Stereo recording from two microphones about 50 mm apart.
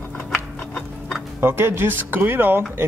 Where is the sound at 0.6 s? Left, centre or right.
Left.